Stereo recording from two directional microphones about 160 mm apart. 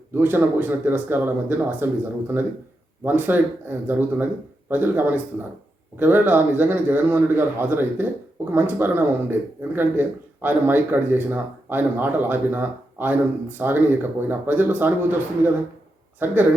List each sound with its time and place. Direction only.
0.2 s a man's voice: 10° right (ahead or behind)
16.2 s a man's voice: 10° right (ahead or behind)